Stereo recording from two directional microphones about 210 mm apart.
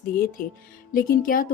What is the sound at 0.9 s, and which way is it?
Speech, 45° left (ahead or behind).